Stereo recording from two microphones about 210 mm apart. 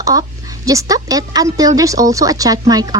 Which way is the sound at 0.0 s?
15° right (ahead or behind).